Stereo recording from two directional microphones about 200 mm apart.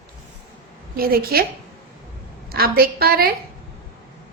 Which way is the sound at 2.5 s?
50° right (ahead or behind).